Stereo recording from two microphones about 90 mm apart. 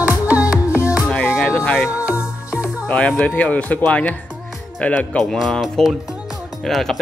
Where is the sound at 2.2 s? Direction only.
10° right (ahead or behind).